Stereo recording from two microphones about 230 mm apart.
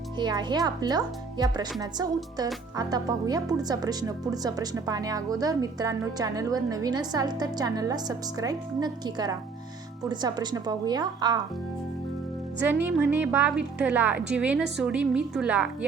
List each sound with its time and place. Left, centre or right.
0.2 s speech: centre
12.8 s a woman's voice: centre